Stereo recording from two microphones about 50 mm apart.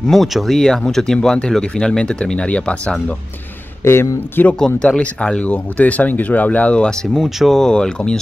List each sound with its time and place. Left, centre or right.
0.0 s speech: centre; by 3.2 s left
3.8 s speech: left
4.6 s speech: centre
7.2 s speech: centre
7.5 s speech: centre